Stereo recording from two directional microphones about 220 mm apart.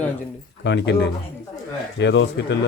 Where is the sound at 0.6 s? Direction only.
50° left (ahead or behind).